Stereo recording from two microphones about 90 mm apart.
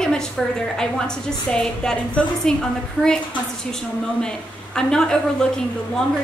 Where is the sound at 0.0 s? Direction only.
5° left (ahead or behind).